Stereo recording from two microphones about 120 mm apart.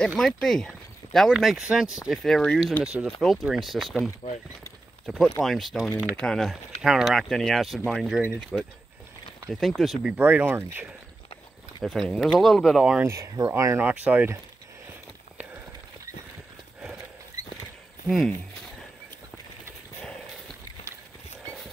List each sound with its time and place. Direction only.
0.0 s speech: centre (ahead or behind)
2.8 s speech: 10° right (ahead or behind)
10.1 s speech: 15° right (ahead or behind)
11.8 s speech: centre (ahead or behind)
13.0 s speech: 25° right (ahead or behind)
18.0 s speech: centre (ahead or behind)